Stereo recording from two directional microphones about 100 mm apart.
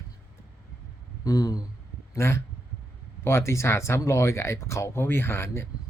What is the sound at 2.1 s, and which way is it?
Speech, 25° left (ahead or behind).